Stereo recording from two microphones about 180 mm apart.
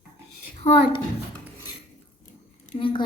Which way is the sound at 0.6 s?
30° left (ahead or behind).